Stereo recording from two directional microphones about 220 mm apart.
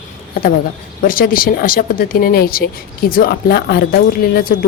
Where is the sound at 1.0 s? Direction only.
40° left (ahead or behind).